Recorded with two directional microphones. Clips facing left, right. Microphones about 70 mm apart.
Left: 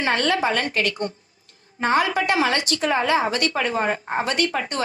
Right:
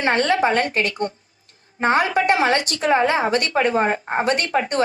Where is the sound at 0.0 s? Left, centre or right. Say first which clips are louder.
Right 3 dB; right.